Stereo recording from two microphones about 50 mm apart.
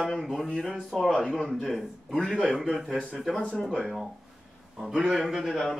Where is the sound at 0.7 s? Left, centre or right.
Centre.